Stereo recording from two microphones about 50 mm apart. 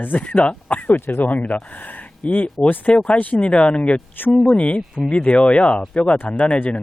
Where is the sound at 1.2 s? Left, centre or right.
Left.